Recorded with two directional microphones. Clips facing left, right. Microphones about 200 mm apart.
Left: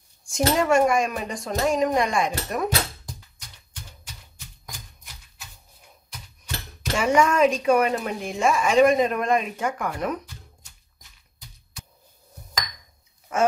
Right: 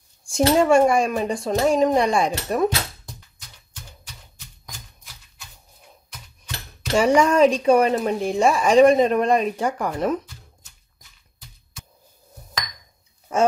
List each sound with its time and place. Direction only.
0.2 s speech: 30° right (ahead or behind)
7.0 s speech: 35° right (ahead or behind)
13.3 s speech: 30° right (ahead or behind)